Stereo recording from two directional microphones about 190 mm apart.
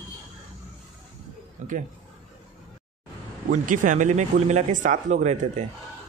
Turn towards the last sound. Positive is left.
turn(degrees=-40)  # may be behind; listen again after turning